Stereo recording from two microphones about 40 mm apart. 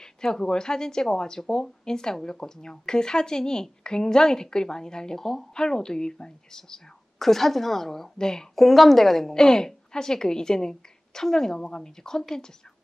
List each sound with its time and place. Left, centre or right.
0.0 s speech: centre
8.5 s a woman's voice: centre